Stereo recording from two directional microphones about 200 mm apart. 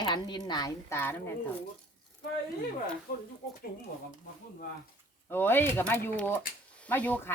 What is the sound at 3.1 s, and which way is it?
Speech, 50° left (ahead or behind).